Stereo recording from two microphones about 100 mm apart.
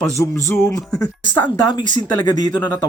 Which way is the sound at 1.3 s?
35° left (ahead or behind).